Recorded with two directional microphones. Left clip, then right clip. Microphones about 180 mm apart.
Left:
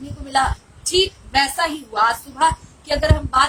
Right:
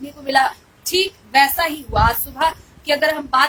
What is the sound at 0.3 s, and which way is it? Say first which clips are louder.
A woman's voice: right 2 dB; 15° right (ahead or behind).